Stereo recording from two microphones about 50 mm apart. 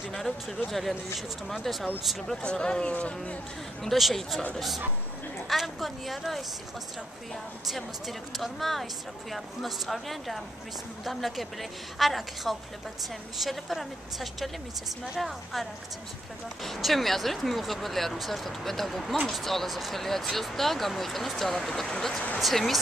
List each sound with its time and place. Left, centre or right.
0.1 s speech: centre
2.4 s speech: centre
3.8 s speech: centre
7.6 s speech: centre
16.6 s speech: centre